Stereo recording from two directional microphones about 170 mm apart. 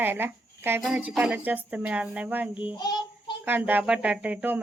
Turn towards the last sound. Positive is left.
turn(degrees=-10)  # may be behind; listen again after turning